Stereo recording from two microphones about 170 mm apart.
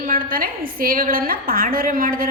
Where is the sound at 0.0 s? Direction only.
55° right (ahead or behind).